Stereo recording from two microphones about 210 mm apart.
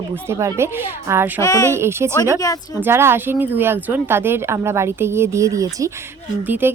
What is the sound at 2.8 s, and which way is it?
A woman's voice, 10° right (ahead or behind).